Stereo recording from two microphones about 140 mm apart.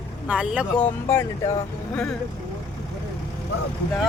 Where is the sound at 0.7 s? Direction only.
15° left (ahead or behind).